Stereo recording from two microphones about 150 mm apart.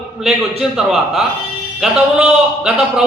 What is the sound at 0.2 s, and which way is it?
A man's voice, 5° right (ahead or behind).